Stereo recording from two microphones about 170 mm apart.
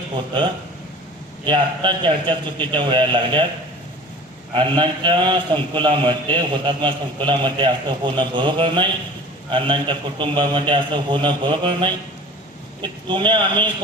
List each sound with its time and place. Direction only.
1.5 s a man's voice: 25° right (ahead or behind)
4.5 s a man's voice: 30° right (ahead or behind)